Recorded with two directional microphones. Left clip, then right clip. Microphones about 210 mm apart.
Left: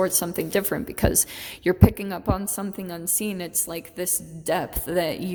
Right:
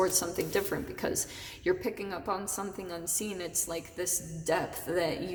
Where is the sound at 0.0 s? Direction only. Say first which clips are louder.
Left 5 dB; 40° left (ahead or behind).